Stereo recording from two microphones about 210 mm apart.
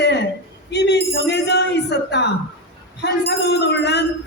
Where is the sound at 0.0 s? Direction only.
55° left (ahead or behind).